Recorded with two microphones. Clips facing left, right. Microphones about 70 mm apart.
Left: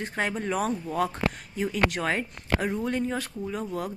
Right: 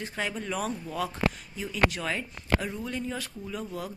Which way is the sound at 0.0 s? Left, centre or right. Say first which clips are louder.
Left 4 dB; left.